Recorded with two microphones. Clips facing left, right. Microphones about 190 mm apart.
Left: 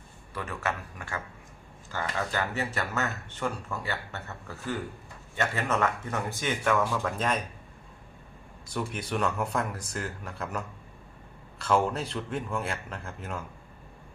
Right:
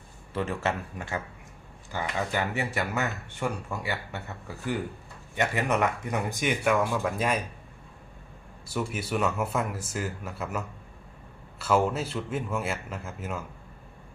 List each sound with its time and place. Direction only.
0.3 s a man's voice: 25° right (ahead or behind); by 7.4 s 10° right (ahead or behind)
8.6 s a man's voice: 5° right (ahead or behind)